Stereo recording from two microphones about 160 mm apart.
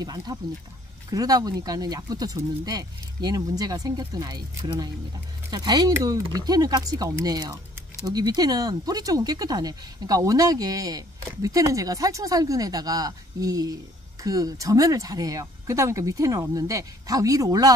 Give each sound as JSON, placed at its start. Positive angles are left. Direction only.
{"t": 0.0, "sound": "speech", "side_deg": -25}